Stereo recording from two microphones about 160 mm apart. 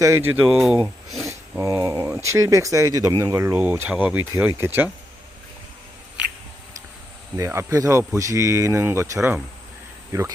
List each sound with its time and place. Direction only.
0.0 s speech: 15° right (ahead or behind)
0.4 s speech: centre (ahead or behind)
1.3 s speech: 20° right (ahead or behind)
7.3 s speech: 20° right (ahead or behind)